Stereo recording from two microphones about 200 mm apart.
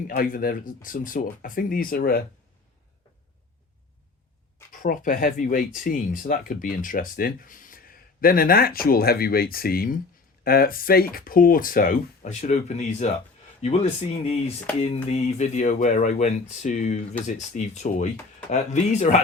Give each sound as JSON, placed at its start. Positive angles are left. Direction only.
{"t": 0.2, "sound": "speech", "side_deg": 45}
{"t": 4.7, "sound": "speech", "side_deg": 40}